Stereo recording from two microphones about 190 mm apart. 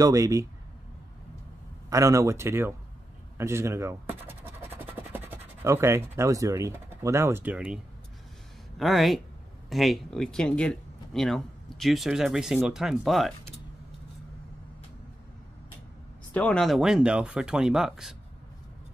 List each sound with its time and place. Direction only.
0.0 s speech: 15° right (ahead or behind)
1.9 s speech: 15° right (ahead or behind)
3.3 s scratch: 15° right (ahead or behind)
8.7 s speech: centre (ahead or behind)
16.3 s speech: 5° left (ahead or behind)